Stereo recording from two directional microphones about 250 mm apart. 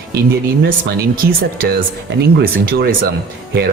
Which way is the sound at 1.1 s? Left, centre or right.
Right.